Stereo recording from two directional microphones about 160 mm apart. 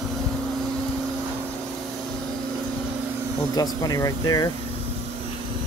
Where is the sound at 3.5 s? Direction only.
25° left (ahead or behind).